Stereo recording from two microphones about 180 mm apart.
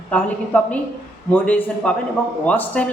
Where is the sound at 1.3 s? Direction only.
10° left (ahead or behind).